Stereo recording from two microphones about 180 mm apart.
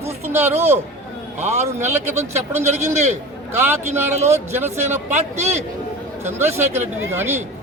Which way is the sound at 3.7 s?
15° right (ahead or behind).